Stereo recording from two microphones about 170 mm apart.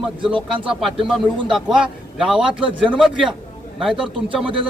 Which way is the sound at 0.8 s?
Centre (ahead or behind).